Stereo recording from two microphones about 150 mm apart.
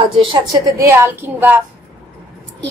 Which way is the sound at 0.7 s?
20° right (ahead or behind).